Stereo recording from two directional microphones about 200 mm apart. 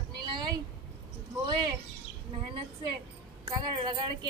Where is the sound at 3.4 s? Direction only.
25° right (ahead or behind).